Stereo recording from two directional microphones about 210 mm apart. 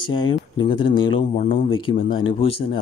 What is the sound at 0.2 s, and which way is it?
Speech, 20° left (ahead or behind).